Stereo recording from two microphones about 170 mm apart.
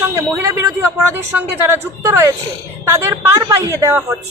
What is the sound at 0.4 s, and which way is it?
A woman's voice, 15° right (ahead or behind).